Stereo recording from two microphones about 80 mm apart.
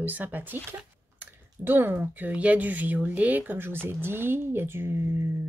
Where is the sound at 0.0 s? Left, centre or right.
Right.